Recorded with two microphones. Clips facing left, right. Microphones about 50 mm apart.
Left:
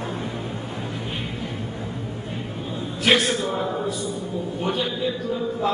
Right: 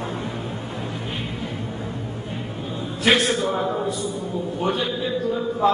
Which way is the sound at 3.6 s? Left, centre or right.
Centre.